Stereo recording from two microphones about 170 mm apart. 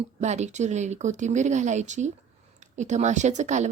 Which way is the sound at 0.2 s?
40° right (ahead or behind).